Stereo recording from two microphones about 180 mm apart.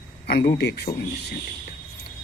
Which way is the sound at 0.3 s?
65° left (ahead or behind).